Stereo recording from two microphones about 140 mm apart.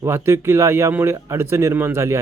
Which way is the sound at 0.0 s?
20° right (ahead or behind).